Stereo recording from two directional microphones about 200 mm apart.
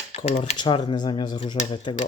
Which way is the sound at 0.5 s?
25° left (ahead or behind).